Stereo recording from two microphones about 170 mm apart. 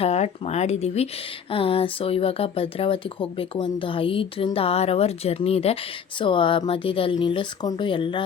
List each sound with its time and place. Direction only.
0.0 s speech: 40° left (ahead or behind)